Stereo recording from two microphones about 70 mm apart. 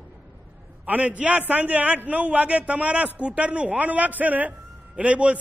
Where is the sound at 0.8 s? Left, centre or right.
Centre.